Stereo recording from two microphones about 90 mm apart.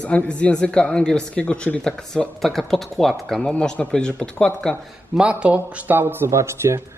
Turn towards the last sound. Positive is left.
turn(degrees=-30)  # may be behind; listen again after turning